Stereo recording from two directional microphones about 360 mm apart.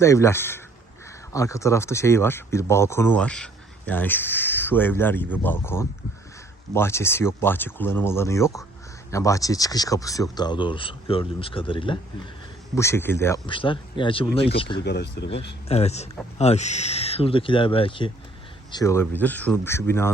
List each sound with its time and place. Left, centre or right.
0.0 s speech: centre
14.8 s speech: left
15.7 s speech: centre